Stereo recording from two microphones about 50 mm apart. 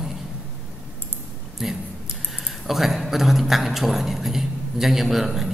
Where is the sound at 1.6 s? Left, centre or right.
Centre.